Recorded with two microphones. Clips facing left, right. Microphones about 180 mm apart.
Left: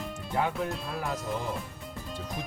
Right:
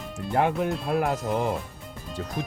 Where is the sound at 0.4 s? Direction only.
60° right (ahead or behind).